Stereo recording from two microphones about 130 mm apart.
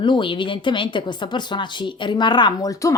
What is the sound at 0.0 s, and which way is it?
A woman's voice, 40° left (ahead or behind).